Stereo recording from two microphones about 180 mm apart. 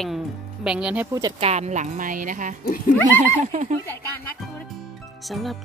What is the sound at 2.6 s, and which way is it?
Speech, 50° left (ahead or behind).